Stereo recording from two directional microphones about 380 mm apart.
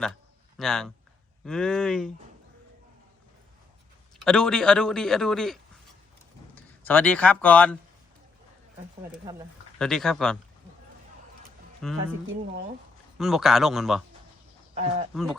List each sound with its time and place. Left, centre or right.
0.6 s a man's voice: centre
4.2 s a man's voice: centre
9.7 s a man's voice: centre
11.8 s a man's voice: centre
13.1 s a man's voice: centre
14.8 s speech: centre
15.1 s a man's voice: centre